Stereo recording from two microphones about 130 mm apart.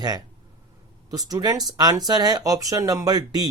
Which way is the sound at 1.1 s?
30° right (ahead or behind).